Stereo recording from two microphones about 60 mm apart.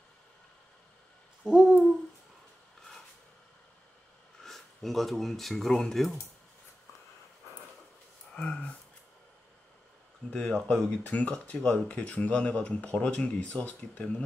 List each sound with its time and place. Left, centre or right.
1.4 s hoot: centre
4.4 s speech: centre
8.4 s a sound: centre
10.3 s speech: centre